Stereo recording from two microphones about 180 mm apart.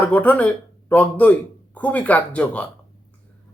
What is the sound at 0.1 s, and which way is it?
Speech, 5° left (ahead or behind).